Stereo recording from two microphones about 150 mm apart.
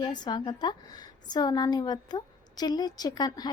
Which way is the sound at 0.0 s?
30° left (ahead or behind).